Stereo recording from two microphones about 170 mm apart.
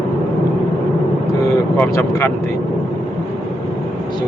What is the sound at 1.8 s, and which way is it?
Speech, 15° left (ahead or behind).